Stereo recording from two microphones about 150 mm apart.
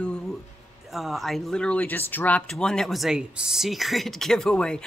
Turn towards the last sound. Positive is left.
turn(degrees=5)  # may be behind; listen again after turning